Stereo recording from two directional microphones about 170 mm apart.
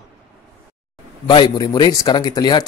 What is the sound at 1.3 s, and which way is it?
Speech, 25° left (ahead or behind).